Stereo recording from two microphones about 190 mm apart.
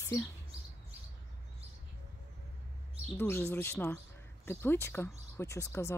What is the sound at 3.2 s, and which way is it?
Speech, 10° left (ahead or behind).